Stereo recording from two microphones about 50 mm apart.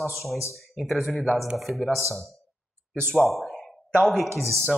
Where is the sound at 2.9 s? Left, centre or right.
Centre.